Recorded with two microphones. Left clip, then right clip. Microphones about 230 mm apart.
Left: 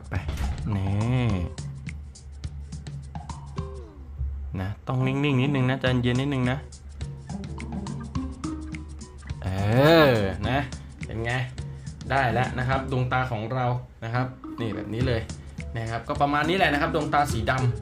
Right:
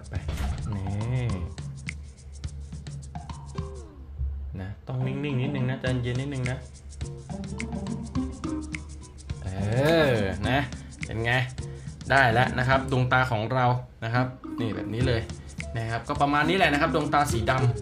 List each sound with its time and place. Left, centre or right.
1.9 s music: centre
4.6 s speech: left
7.0 s music: centre
9.4 s music: left
10.4 s speech: centre